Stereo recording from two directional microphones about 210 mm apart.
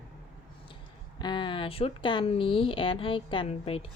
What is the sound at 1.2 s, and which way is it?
Speech, 20° left (ahead or behind).